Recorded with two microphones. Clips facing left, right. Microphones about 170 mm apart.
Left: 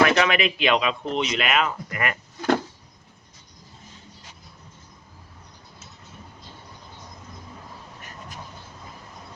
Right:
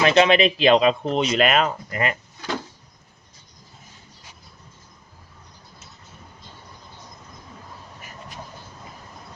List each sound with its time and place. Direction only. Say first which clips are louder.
0.0 s speech: right 3 dB; 25° right (ahead or behind)